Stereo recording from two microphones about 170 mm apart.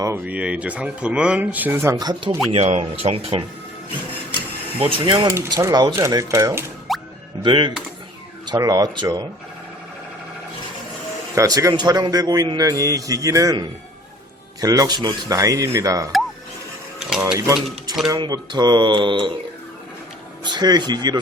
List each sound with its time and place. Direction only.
0.0 s speech: 10° right (ahead or behind)
2.5 s speech: 40° right (ahead or behind)
4.8 s a man's voice: 30° right (ahead or behind)
6.9 s music: centre (ahead or behind)
7.4 s a man's voice: 30° right (ahead or behind)
11.3 s a man's voice: 20° right (ahead or behind)
17.1 s speech: 5° right (ahead or behind)
17.3 s a man's voice: 20° right (ahead or behind)
20.4 s a man's voice: 25° right (ahead or behind)